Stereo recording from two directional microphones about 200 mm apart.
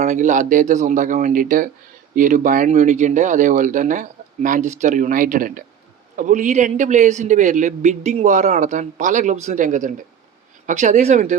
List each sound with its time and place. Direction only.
0.0 s a man's voice: 35° right (ahead or behind)